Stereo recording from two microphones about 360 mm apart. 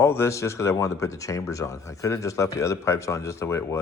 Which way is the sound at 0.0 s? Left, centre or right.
Centre.